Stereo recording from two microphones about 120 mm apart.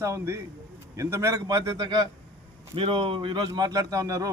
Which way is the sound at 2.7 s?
45° right (ahead or behind).